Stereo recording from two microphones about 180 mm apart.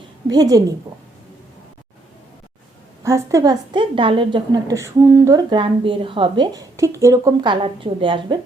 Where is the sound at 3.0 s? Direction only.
15° right (ahead or behind).